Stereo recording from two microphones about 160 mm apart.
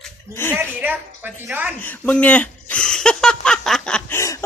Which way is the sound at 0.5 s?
10° right (ahead or behind).